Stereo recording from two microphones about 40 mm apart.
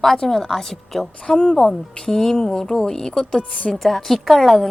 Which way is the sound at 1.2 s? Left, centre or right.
Left.